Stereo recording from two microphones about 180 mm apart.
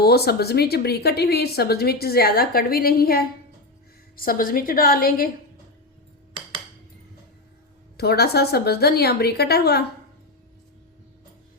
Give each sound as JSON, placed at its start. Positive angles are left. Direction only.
{"t": 0.0, "sound": "a woman's voice", "side_deg": 60}
{"t": 7.9, "sound": "speech", "side_deg": 60}